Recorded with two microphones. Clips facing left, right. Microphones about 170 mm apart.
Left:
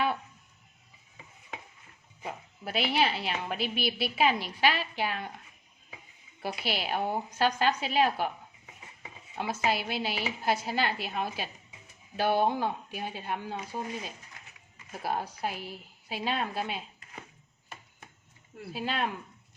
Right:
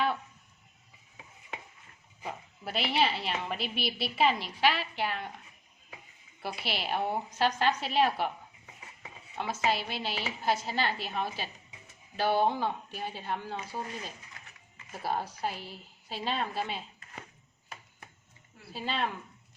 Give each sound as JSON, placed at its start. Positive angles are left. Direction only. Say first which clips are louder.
{"t": 2.2, "sound": "a woman's voice", "louder": "left 1 dB", "side_deg": 0}
{"t": 6.4, "sound": "a woman's voice", "louder": "left 2 dB", "side_deg": 0}
{"t": 9.4, "sound": "a woman's voice", "louder": "left 1 dB", "side_deg": 5}
{"t": 18.7, "sound": "a woman's voice", "louder": "left 1 dB", "side_deg": 5}